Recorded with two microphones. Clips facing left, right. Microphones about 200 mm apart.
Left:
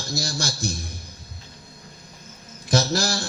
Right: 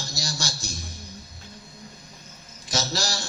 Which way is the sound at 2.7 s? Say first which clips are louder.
Left 7 dB; 55° left (ahead or behind).